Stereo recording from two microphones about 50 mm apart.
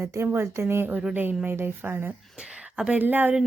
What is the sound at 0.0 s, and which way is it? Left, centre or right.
Speech, right.